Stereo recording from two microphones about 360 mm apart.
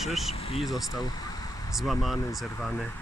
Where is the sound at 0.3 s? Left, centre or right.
Centre.